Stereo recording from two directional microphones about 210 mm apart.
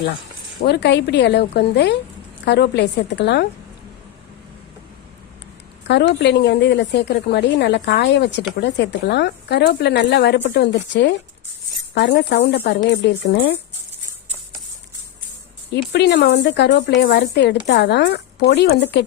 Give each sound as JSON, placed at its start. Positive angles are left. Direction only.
{"t": 0.6, "sound": "a woman's voice", "side_deg": 50}
{"t": 5.9, "sound": "a woman's voice", "side_deg": 55}
{"t": 15.7, "sound": "a woman's voice", "side_deg": 55}